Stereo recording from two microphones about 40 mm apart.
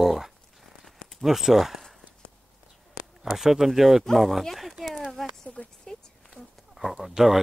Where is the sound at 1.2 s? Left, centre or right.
Centre.